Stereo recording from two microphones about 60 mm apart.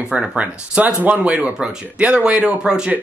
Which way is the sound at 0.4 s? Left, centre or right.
Right.